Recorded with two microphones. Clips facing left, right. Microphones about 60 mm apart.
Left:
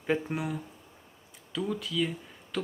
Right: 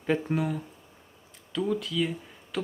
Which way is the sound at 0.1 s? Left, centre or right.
Centre.